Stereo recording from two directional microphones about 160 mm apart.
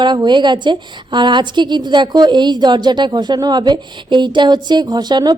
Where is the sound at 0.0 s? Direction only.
30° right (ahead or behind).